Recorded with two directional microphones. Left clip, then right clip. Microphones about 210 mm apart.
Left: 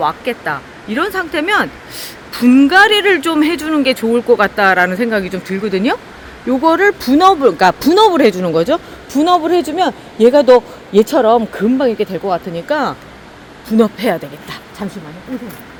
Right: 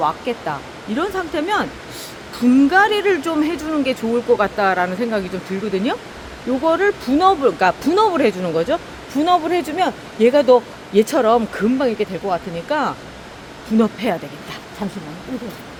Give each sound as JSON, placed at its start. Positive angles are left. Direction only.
{"t": 0.0, "sound": "a woman's voice", "side_deg": 35}
{"t": 11.8, "sound": "a woman's voice", "side_deg": 45}
{"t": 14.8, "sound": "speech", "side_deg": 35}